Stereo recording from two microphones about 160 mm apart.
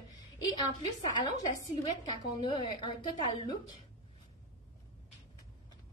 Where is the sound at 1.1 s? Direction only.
30° left (ahead or behind).